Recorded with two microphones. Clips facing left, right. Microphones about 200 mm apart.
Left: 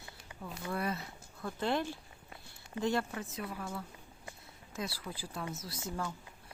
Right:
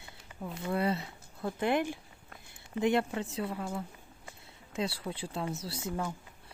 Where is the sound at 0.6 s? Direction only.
25° right (ahead or behind).